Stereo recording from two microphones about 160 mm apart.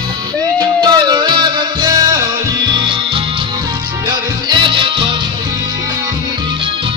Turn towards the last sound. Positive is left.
turn(degrees=-30)  # may be behind; listen again after turning